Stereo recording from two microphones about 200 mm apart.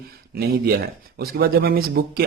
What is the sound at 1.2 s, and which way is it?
Speech, 50° right (ahead or behind).